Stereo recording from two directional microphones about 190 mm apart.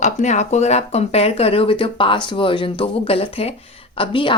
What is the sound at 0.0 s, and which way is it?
Speech, 40° left (ahead or behind).